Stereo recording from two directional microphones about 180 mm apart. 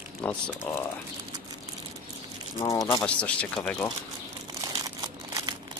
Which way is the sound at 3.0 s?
5° left (ahead or behind).